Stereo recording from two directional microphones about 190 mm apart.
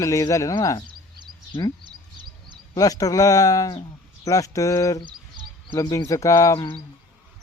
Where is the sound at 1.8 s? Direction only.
25° right (ahead or behind).